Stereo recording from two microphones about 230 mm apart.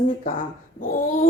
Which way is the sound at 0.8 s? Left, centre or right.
Left.